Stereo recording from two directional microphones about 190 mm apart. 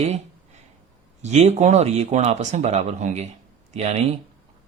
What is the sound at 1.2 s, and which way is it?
Speech, 35° right (ahead or behind).